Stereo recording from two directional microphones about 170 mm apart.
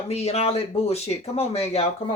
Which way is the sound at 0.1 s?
35° left (ahead or behind).